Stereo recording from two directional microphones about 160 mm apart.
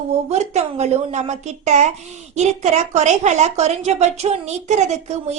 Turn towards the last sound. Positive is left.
turn(degrees=-45)  # may be behind; listen again after turning